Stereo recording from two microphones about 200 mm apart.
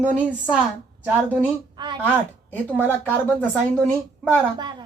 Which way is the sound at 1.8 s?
25° right (ahead or behind).